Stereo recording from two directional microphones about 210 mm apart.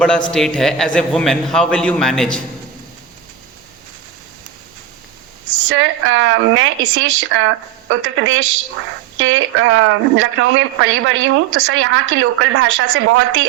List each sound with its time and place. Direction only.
0.3 s a man's voice: 5° left (ahead or behind)
5.6 s speech: 70° right (ahead or behind)